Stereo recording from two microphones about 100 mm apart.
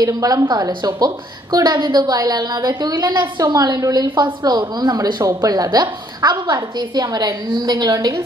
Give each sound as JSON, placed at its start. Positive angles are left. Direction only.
{"t": 0.0, "sound": "a woman's voice", "side_deg": -35}